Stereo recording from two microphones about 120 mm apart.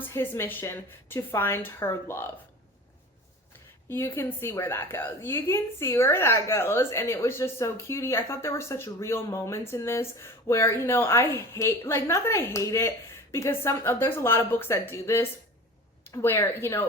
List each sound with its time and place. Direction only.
0.0 s a woman's voice: 20° left (ahead or behind)
3.8 s a woman's voice: 20° left (ahead or behind)